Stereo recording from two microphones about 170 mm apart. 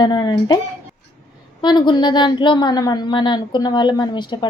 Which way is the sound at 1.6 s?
25° left (ahead or behind).